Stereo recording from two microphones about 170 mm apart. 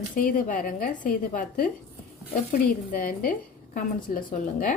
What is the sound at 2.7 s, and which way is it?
A woman's voice, 55° left (ahead or behind).